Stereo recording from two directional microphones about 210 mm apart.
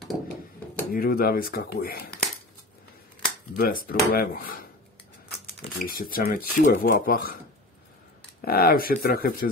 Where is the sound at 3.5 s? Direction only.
45° left (ahead or behind).